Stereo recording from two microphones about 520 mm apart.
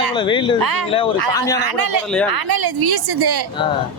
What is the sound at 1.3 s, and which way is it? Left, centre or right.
Speech, centre.